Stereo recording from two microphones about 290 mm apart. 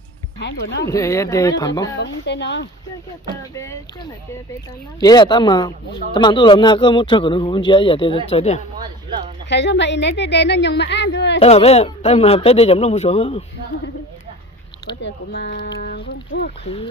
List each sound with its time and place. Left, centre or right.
0.4 s a woman's voice: left
0.8 s a man's voice: centre
2.0 s a woman's voice: left
3.5 s a man's voice: centre
9.5 s a woman's voice: left
11.3 s speech: left
15.0 s a woman's voice: left
16.6 s speech: centre